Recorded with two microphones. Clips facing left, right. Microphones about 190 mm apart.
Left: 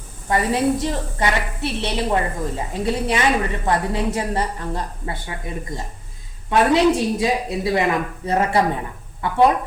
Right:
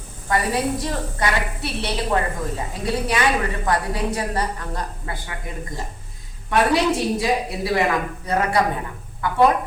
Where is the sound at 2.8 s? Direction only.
25° left (ahead or behind).